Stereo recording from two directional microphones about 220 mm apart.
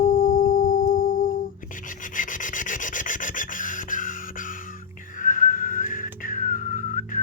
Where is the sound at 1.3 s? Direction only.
35° left (ahead or behind).